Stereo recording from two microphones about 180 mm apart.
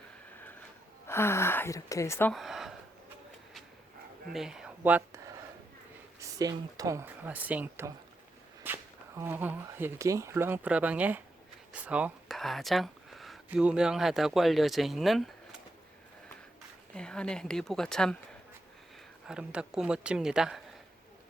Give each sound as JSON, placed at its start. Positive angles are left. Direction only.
{"t": 1.0, "sound": "a woman's voice", "side_deg": 15}
{"t": 2.3, "sound": "speech", "side_deg": 0}
{"t": 4.3, "sound": "speech", "side_deg": -5}
{"t": 16.9, "sound": "speech", "side_deg": 5}
{"t": 19.3, "sound": "speech", "side_deg": -5}